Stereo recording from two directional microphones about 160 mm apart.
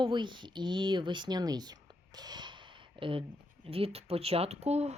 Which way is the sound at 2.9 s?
35° right (ahead or behind).